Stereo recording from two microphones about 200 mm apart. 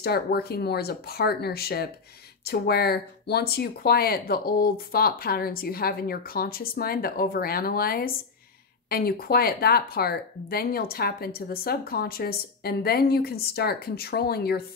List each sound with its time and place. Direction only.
0.0 s speech: 50° left (ahead or behind)